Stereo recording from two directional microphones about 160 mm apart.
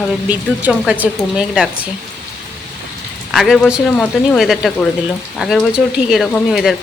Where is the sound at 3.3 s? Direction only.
Centre (ahead or behind).